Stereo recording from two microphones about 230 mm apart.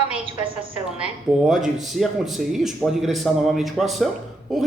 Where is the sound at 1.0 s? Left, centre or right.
Centre.